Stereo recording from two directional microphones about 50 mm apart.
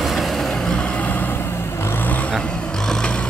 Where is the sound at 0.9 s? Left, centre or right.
Left.